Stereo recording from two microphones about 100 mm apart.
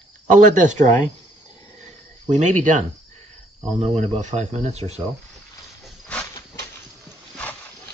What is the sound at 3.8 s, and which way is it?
Speech, 90° right.